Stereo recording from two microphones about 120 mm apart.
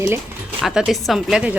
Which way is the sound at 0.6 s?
Centre (ahead or behind).